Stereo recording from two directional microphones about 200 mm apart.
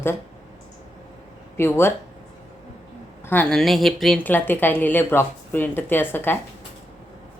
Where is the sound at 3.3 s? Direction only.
5° left (ahead or behind).